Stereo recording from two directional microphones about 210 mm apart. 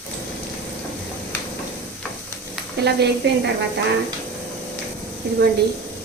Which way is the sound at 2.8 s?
50° right (ahead or behind).